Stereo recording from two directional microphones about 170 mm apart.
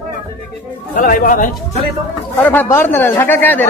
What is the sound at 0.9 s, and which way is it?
Speech, 55° left (ahead or behind).